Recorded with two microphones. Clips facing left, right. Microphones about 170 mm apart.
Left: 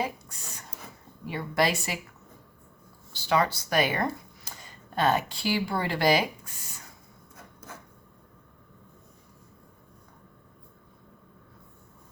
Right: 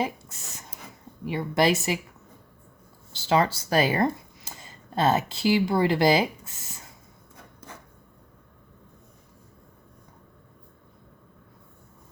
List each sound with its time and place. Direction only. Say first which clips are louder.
0.0 s a sound: right 3 dB; 25° right (ahead or behind)
1.3 s speech: right 4 dB; 20° right (ahead or behind)
3.1 s speech: right 3 dB; 25° right (ahead or behind)